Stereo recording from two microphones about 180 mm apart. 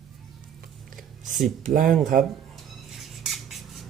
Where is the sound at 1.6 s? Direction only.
50° right (ahead or behind).